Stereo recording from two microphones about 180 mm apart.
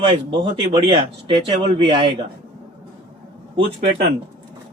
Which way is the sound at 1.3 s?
25° right (ahead or behind).